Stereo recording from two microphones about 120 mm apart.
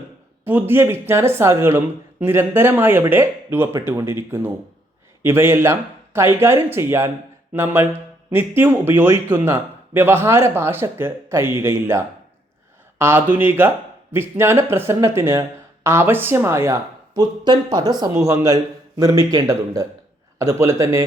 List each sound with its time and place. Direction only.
0.4 s speech: 20° right (ahead or behind); by 17.9 s 35° right (ahead or behind)
18.1 s speech: 25° right (ahead or behind)